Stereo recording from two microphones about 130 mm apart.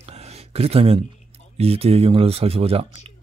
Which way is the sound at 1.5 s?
50° right (ahead or behind).